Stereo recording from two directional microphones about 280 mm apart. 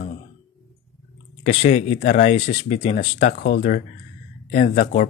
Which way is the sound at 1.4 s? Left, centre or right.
Left.